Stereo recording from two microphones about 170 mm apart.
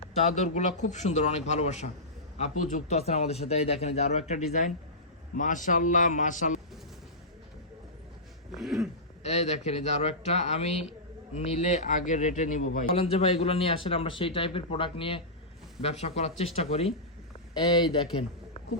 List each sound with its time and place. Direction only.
0.0 s speech: 40° left (ahead or behind)
8.5 s a sound: centre (ahead or behind)
9.2 s speech: 40° left (ahead or behind)
12.9 s a man's voice: 35° left (ahead or behind)